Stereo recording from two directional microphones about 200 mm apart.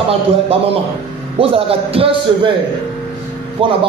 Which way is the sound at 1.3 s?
30° right (ahead or behind).